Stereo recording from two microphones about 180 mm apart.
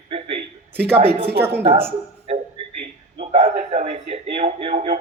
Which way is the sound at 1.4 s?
10° right (ahead or behind).